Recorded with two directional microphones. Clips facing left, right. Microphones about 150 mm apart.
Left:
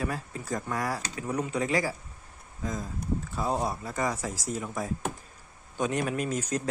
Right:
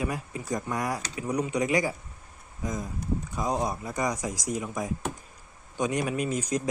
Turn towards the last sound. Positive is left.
turn(degrees=-10)  # may be behind; listen again after turning